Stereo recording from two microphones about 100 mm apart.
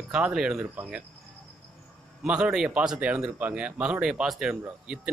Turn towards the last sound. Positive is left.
turn(degrees=-10)  # may be behind; listen again after turning